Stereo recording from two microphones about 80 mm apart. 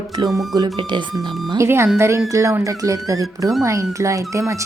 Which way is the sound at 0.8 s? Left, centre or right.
Right.